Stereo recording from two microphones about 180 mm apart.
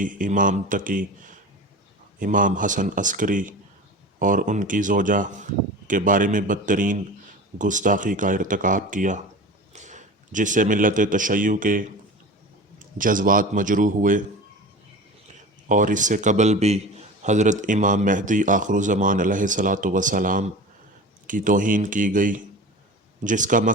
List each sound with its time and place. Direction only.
0.0 s a man's voice: 45° right (ahead or behind)
13.0 s a man's voice: 50° right (ahead or behind)
15.7 s a man's voice: 45° right (ahead or behind)